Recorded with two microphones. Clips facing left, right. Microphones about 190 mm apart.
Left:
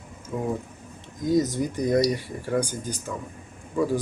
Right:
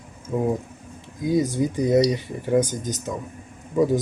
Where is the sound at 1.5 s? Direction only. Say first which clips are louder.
Right 4 dB; 10° right (ahead or behind).